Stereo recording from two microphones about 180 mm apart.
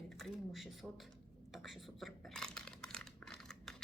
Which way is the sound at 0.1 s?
Centre (ahead or behind).